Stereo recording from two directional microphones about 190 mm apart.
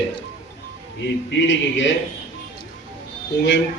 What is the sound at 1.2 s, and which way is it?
Speech, 70° left (ahead or behind).